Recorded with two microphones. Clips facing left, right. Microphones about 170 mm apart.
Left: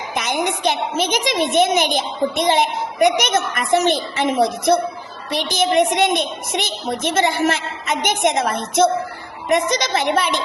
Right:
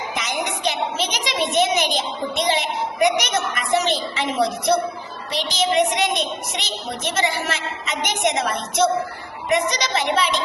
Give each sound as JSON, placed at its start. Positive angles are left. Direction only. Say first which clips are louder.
{"t": 0.1, "sound": "a woman's voice", "louder": "left 7 dB", "side_deg": 55}